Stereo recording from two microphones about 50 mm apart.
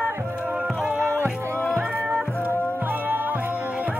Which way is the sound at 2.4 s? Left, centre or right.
Left.